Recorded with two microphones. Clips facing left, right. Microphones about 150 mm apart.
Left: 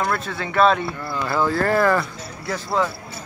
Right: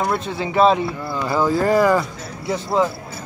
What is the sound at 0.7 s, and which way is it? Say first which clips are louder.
Speech: right 3 dB; 10° right (ahead or behind).